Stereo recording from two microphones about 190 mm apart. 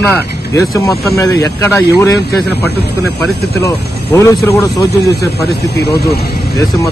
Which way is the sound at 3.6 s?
15° left (ahead or behind).